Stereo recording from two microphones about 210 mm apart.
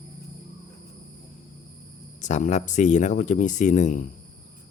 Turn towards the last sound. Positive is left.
turn(degrees=35)  # may be behind; listen again after turning